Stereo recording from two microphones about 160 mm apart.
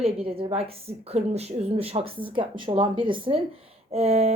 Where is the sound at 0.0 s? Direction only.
35° right (ahead or behind).